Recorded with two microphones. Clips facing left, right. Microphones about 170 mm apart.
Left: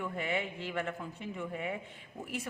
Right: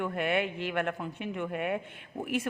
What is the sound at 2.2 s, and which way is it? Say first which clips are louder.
Speech: right 8 dB; 90° right.